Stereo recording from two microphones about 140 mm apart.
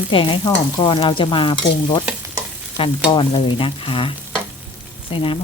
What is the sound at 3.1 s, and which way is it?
Stir, 35° left (ahead or behind).